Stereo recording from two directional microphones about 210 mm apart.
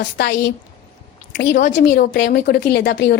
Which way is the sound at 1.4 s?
50° left (ahead or behind).